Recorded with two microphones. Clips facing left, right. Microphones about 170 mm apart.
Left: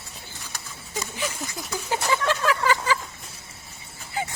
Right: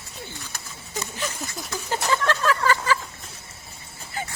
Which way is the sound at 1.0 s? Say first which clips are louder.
Left 1 dB; 10° left (ahead or behind).